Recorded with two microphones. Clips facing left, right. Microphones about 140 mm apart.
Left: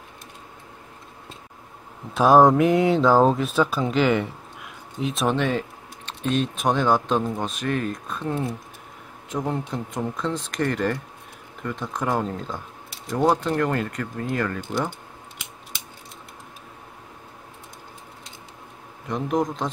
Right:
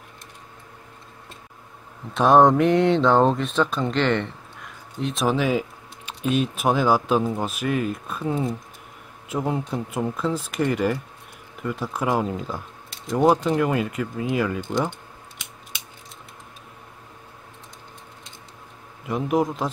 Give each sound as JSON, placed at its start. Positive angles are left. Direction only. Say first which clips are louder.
{"t": 2.1, "sound": "speech", "louder": "even", "side_deg": 0}
{"t": 12.9, "sound": "a sound", "louder": "right 3 dB", "side_deg": 5}
{"t": 13.2, "sound": "speech", "louder": "right 2 dB", "side_deg": -10}
{"t": 19.0, "sound": "speech", "louder": "right 2 dB", "side_deg": -5}